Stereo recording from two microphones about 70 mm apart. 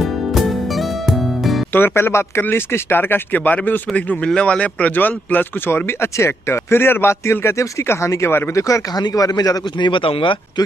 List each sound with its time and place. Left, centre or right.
0.0 s music: centre
1.7 s speech: left
8.5 s speech: left
9.0 s a man's voice: left